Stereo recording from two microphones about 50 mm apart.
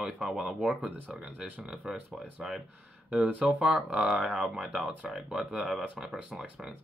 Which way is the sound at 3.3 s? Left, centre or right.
Right.